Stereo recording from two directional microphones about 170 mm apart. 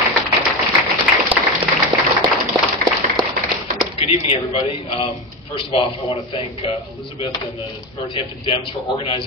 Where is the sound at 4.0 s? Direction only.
35° left (ahead or behind).